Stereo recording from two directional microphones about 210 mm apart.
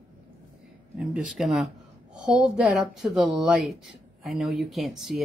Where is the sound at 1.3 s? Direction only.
Centre (ahead or behind).